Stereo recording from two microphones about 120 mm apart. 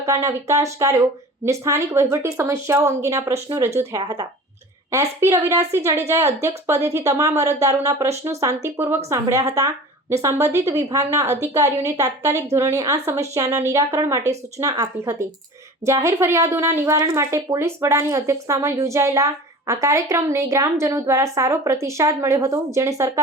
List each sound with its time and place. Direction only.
0.0 s speech: 25° right (ahead or behind)